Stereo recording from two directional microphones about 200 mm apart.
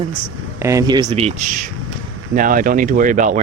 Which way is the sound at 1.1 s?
35° right (ahead or behind).